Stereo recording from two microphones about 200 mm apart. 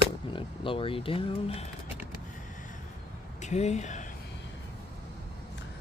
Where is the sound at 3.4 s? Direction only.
35° left (ahead or behind).